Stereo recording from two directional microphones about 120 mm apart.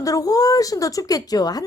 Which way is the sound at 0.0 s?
30° left (ahead or behind).